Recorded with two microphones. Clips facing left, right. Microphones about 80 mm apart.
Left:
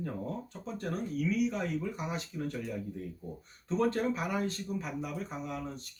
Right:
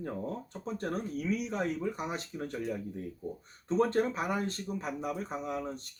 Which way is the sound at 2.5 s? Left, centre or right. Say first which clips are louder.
Right 3 dB; right.